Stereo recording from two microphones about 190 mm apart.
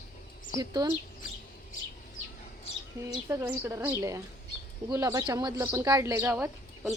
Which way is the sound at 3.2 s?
15° right (ahead or behind).